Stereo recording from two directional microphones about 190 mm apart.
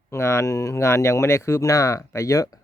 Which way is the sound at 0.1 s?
15° left (ahead or behind).